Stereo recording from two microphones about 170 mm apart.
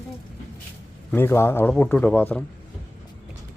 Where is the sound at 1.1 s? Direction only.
15° left (ahead or behind).